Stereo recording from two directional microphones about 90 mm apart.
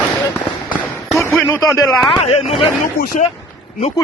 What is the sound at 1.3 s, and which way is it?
Speech, 25° left (ahead or behind).